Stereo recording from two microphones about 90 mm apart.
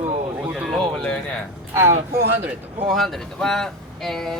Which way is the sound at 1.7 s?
30° right (ahead or behind).